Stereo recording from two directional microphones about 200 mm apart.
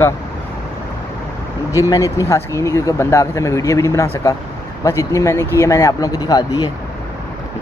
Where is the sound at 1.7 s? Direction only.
15° left (ahead or behind).